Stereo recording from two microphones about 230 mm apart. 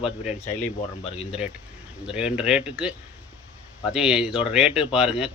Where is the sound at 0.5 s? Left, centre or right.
Left.